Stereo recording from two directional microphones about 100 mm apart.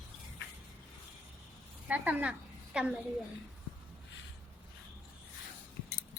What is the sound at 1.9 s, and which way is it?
A woman's voice, 15° right (ahead or behind).